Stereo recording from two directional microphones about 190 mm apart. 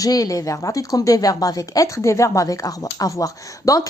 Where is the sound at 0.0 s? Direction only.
20° left (ahead or behind).